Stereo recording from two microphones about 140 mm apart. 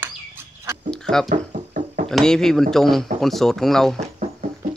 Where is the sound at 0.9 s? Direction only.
5° left (ahead or behind).